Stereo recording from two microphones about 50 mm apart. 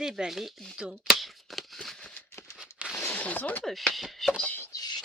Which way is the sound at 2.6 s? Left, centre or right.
Centre.